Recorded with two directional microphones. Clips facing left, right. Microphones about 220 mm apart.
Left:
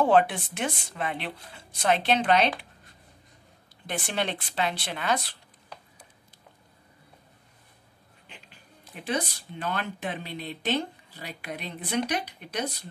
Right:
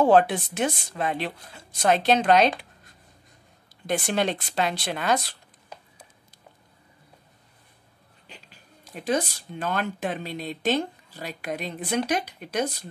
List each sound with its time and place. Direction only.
0.0 s a woman's voice: 40° right (ahead or behind)
3.8 s a woman's voice: 40° right (ahead or behind)
8.3 s speech: 40° right (ahead or behind)